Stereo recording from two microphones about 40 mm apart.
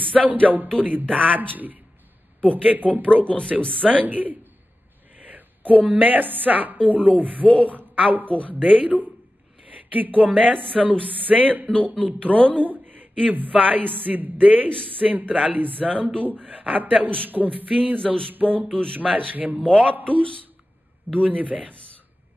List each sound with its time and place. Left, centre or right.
0.1 s a man's voice: right
17.9 s a sound: left
18.3 s a woman's voice: right
19.7 s a man's voice: right
20.0 s a woman's voice: right